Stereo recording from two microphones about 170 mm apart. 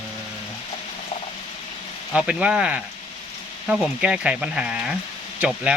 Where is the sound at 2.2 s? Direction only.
5° right (ahead or behind).